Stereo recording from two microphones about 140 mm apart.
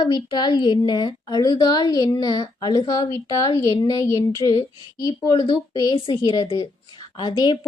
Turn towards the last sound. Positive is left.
turn(degrees=30)  # may be behind; listen again after turning